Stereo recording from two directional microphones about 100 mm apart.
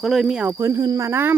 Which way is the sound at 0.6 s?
30° right (ahead or behind).